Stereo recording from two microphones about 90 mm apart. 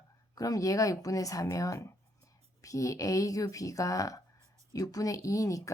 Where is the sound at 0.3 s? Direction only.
40° left (ahead or behind).